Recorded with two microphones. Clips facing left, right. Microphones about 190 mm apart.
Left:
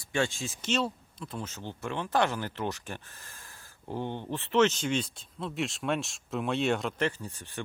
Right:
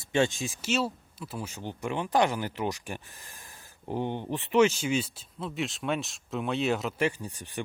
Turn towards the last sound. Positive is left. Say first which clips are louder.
# right 2 dB
turn(degrees=-15)  # may be behind; listen again after turning